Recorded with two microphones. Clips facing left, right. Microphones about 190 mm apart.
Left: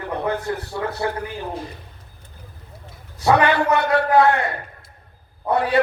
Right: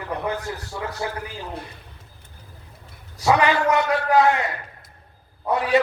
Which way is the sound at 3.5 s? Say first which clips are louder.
Left 2 dB; 60° left (ahead or behind).